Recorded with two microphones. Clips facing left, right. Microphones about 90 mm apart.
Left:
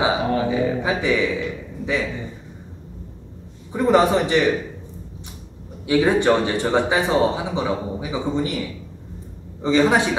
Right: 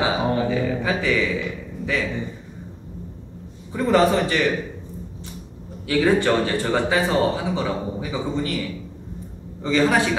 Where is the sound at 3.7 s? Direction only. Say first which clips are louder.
Left 1 dB; 15° left (ahead or behind).